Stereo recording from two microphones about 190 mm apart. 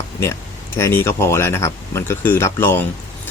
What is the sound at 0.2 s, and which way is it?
Speech, 15° left (ahead or behind).